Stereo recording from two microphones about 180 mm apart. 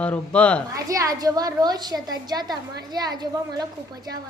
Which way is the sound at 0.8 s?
20° right (ahead or behind).